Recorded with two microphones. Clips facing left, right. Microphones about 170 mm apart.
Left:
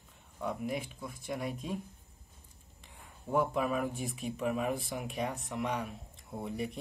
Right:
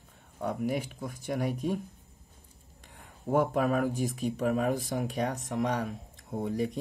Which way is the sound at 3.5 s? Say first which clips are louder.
Right 5 dB; 50° right (ahead or behind).